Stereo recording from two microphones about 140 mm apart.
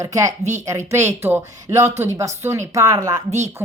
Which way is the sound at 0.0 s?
25° right (ahead or behind).